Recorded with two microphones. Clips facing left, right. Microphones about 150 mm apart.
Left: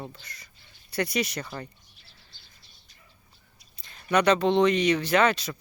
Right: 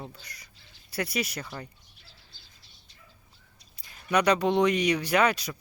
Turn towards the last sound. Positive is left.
turn(degrees=-10)  # may be behind; listen again after turning